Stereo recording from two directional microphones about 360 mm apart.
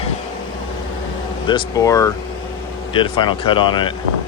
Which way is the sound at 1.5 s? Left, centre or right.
Centre.